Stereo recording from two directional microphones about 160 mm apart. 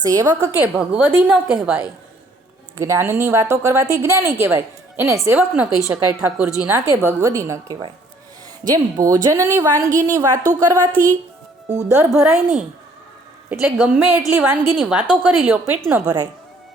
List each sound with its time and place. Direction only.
0.0 s a woman's voice: 20° right (ahead or behind); by 1.8 s 5° right (ahead or behind)
2.7 s a woman's voice: 20° right (ahead or behind)
10.9 s a woman's voice: 10° left (ahead or behind)
11.9 s a woman's voice: 15° right (ahead or behind)